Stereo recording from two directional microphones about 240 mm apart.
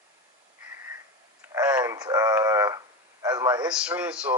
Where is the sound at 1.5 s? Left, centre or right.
Centre.